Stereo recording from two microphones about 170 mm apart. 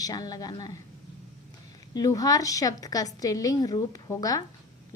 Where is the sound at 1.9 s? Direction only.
20° left (ahead or behind).